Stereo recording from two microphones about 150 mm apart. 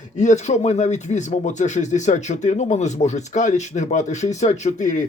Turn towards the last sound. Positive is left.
turn(degrees=55)  # may be behind; listen again after turning